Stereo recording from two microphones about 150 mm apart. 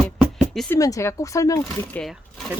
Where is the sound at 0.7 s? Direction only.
20° left (ahead or behind).